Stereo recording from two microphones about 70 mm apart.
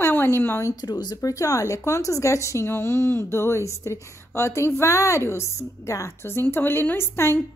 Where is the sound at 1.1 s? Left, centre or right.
Left.